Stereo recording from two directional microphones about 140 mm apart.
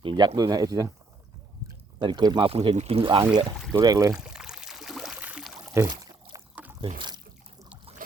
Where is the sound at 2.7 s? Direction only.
45° right (ahead or behind); by 4.1 s 25° right (ahead or behind).